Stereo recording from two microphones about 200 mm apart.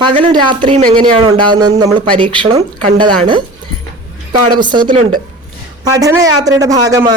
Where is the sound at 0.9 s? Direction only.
25° right (ahead or behind).